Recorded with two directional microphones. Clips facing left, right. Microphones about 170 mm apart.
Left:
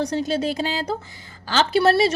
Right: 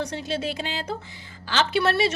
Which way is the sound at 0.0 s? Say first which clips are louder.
Left 6 dB; 40° left (ahead or behind).